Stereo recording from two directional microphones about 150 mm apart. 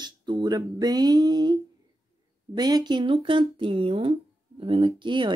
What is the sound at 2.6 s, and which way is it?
Speech, 25° right (ahead or behind).